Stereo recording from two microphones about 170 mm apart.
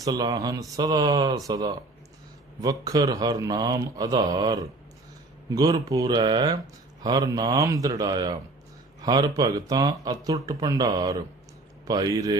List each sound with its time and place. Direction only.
0.0 s speech: 25° right (ahead or behind)